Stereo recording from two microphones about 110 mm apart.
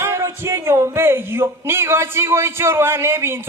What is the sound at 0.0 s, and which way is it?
Speech, 25° right (ahead or behind).